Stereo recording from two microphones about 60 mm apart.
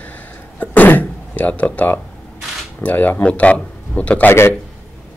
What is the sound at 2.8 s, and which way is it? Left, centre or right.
Speech, left.